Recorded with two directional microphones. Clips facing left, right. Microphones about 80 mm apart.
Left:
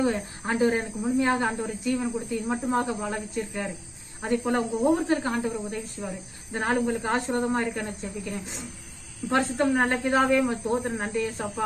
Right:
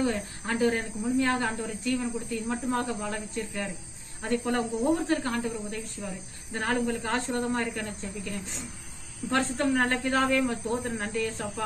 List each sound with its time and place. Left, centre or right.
0.0 s speech: left